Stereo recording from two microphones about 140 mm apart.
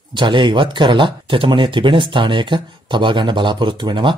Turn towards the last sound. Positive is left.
turn(degrees=-35)  # may be behind; listen again after turning